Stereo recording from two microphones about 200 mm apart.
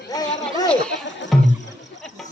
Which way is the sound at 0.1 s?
20° left (ahead or behind).